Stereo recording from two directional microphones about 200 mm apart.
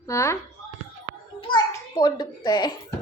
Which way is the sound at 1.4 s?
20° left (ahead or behind).